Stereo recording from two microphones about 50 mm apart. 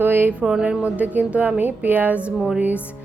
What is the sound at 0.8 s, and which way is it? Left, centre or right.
A woman's voice, right.